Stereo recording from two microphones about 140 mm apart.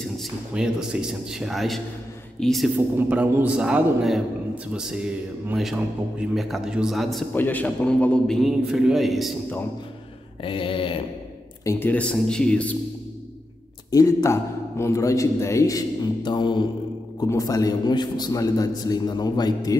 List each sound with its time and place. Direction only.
0.2 s a man's voice: 5° right (ahead or behind)
3.1 s a man's voice: 10° right (ahead or behind)
7.3 s a man's voice: 10° left (ahead or behind)
10.4 s a sound: 40° left (ahead or behind)
11.6 s speech: 10° left (ahead or behind)
13.8 s a man's voice: 25° left (ahead or behind)